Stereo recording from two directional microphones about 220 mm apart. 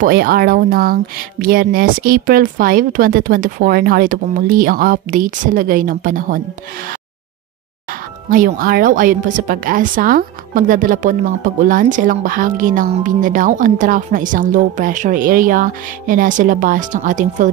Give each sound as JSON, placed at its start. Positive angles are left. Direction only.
{"t": 0.0, "sound": "speech", "side_deg": -45}
{"t": 8.3, "sound": "speech", "side_deg": -40}